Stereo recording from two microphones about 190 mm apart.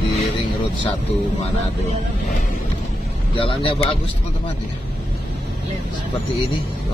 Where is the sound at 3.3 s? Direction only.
30° left (ahead or behind).